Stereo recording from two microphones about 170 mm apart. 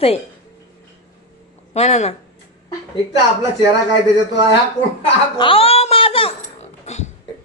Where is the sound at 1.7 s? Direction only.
40° left (ahead or behind).